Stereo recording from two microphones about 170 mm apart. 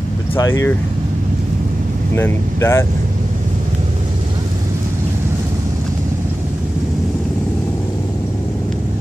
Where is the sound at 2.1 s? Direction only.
15° left (ahead or behind).